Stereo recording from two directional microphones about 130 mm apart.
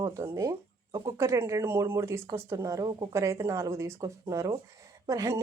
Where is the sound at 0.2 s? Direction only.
20° right (ahead or behind).